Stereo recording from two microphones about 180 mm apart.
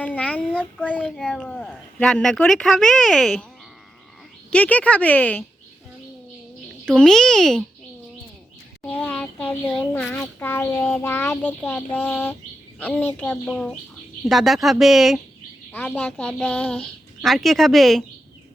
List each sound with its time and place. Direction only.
0.0 s a child's voice: 10° left (ahead or behind)
4.5 s a child's voice: 10° left (ahead or behind)
6.9 s a child's voice: 5° left (ahead or behind)
8.9 s a child's voice: 10° left (ahead or behind)